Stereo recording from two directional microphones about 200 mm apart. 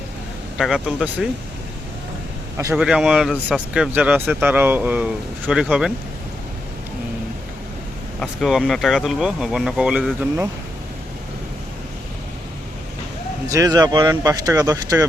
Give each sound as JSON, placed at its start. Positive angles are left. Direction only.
{"t": 0.6, "sound": "speech", "side_deg": 0}
{"t": 2.7, "sound": "speech", "side_deg": -5}
{"t": 8.2, "sound": "speech", "side_deg": 0}
{"t": 13.5, "sound": "speech", "side_deg": -15}